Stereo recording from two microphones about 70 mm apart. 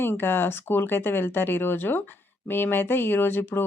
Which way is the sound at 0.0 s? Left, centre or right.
Left.